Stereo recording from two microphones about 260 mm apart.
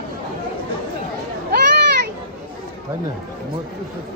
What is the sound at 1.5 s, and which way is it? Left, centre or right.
Children playing, right.